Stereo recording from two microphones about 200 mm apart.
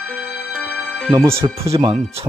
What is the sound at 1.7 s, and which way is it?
Speech, 25° right (ahead or behind).